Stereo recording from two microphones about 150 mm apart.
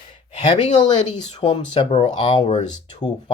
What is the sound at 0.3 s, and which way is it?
Speech, 45° left (ahead or behind).